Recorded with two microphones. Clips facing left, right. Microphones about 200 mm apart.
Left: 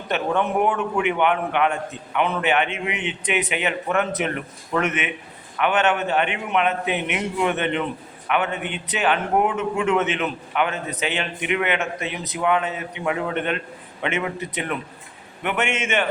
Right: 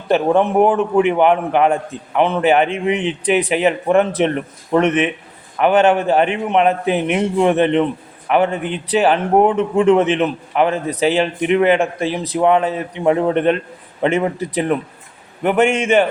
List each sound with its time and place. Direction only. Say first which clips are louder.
0.1 s a man's voice: right 8 dB; 35° right (ahead or behind)